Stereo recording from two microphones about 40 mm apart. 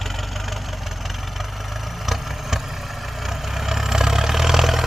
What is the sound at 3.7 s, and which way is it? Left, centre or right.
Vehicle, centre.